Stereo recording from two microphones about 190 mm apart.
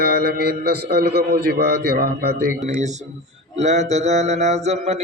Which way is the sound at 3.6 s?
35° right (ahead or behind).